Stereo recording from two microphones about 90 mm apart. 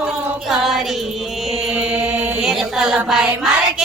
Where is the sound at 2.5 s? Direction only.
5° right (ahead or behind).